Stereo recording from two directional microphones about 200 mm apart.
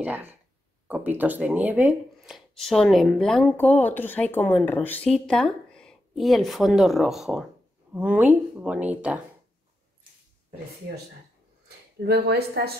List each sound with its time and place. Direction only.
0.0 s speech: 10° right (ahead or behind)
12.0 s speech: 50° right (ahead or behind)